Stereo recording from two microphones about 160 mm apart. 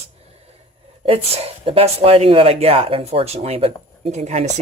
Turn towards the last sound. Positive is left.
turn(degrees=-45)  # may be behind; listen again after turning